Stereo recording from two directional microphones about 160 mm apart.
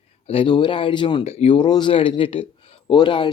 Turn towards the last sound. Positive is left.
turn(degrees=30)  # may be behind; listen again after turning